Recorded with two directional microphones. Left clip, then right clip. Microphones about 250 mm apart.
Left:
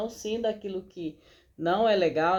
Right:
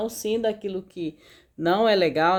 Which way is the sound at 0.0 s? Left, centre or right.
Right.